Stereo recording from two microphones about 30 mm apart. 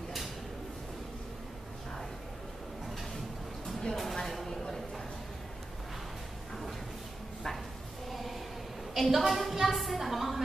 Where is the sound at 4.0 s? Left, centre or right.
Centre.